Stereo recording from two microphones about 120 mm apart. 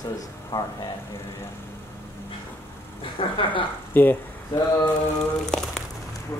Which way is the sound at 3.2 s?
50° left (ahead or behind).